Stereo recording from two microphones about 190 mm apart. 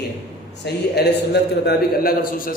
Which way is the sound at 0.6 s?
60° left (ahead or behind).